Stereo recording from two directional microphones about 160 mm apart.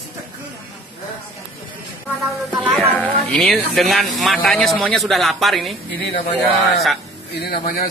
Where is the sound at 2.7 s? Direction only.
10° left (ahead or behind).